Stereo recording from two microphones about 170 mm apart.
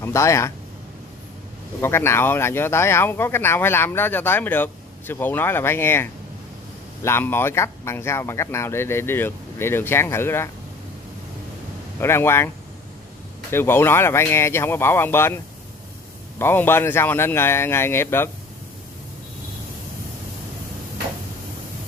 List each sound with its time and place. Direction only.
0.0 s speech: 15° left (ahead or behind)
1.8 s speech: 15° left (ahead or behind)
12.0 s speech: 15° left (ahead or behind)
13.5 s speech: 15° left (ahead or behind)